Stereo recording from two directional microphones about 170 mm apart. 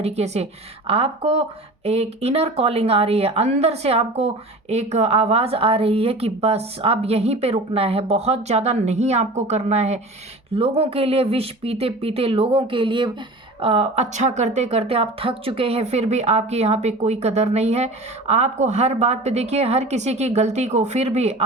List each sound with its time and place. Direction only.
0.0 s speech: 40° right (ahead or behind)